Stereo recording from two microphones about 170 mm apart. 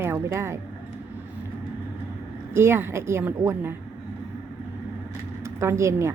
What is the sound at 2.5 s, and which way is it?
A woman's voice, 15° right (ahead or behind).